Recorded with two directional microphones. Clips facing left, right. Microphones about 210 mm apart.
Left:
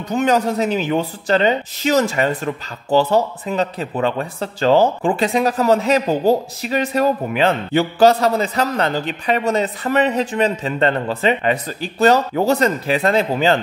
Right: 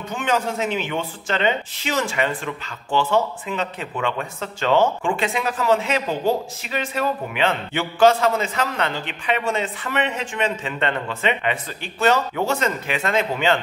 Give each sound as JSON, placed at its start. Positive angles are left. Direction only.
{"t": 0.1, "sound": "speech", "side_deg": 40}